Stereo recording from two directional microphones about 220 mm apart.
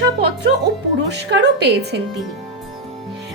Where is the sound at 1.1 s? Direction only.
50° right (ahead or behind).